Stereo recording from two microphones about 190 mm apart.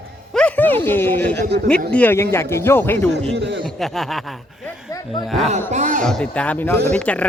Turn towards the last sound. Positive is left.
turn(degrees=5)  # may be behind; listen again after turning